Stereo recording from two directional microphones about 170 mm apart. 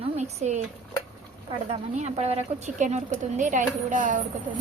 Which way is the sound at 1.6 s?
40° right (ahead or behind).